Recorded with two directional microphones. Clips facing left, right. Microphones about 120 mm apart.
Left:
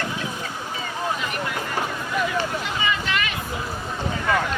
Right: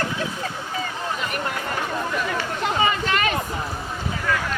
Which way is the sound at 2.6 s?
40° right (ahead or behind).